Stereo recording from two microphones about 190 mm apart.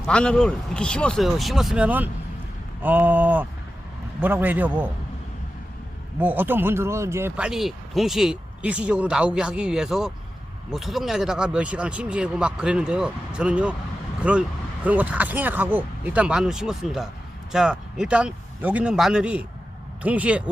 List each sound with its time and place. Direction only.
0.0 s speech: 5° left (ahead or behind)
6.1 s speech: 10° right (ahead or behind)